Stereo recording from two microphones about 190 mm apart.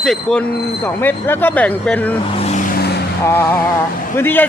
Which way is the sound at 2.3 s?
35° left (ahead or behind).